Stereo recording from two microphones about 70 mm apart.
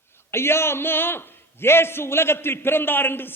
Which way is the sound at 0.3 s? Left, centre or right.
Left.